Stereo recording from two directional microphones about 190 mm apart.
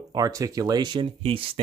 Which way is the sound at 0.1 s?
20° right (ahead or behind).